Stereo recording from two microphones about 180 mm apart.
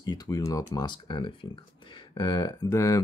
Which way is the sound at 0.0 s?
20° left (ahead or behind).